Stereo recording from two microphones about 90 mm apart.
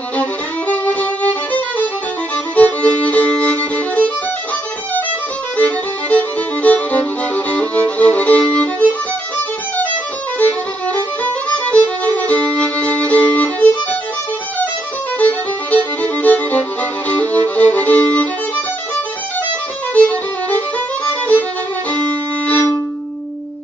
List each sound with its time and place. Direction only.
0.2 s violin: 15° left (ahead or behind)
5.6 s music: 15° left (ahead or behind)
11.5 s violin: 15° left (ahead or behind)
15.1 s music: 15° left (ahead or behind)
19.9 s violin: 15° left (ahead or behind)